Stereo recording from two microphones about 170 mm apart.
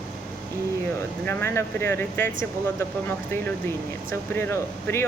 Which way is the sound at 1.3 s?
15° left (ahead or behind).